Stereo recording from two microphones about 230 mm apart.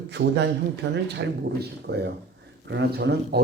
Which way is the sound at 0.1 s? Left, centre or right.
Right.